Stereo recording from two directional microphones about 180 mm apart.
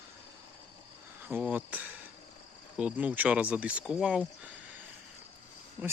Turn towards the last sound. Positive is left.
turn(degrees=-10)  # may be behind; listen again after turning